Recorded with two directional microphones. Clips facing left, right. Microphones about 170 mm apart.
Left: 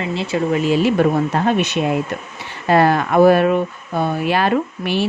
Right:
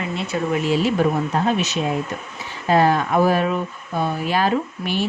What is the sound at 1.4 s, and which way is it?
A woman's voice, 60° left (ahead or behind).